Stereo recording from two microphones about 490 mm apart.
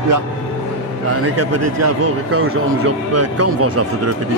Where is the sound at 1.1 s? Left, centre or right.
Right.